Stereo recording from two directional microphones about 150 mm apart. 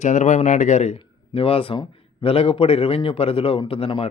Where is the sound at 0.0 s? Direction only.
55° left (ahead or behind).